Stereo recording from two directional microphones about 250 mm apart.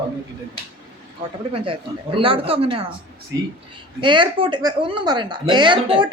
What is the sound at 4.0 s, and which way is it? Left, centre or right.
A woman's voice, centre.